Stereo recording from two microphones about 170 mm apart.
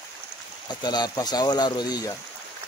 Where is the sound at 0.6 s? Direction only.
25° left (ahead or behind).